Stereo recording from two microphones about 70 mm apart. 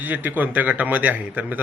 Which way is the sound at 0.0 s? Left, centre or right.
Right.